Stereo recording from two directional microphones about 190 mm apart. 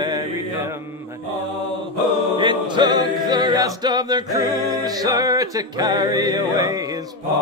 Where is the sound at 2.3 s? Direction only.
25° right (ahead or behind).